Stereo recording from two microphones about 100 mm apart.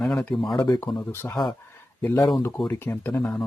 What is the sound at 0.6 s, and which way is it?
Speech, 25° left (ahead or behind).